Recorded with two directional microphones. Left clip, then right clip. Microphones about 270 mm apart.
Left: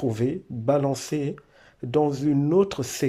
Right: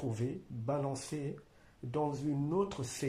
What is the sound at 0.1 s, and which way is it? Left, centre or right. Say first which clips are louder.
Speech: left 13 dB; left.